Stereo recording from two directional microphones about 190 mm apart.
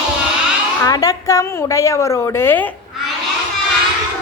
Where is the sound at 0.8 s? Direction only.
20° left (ahead or behind).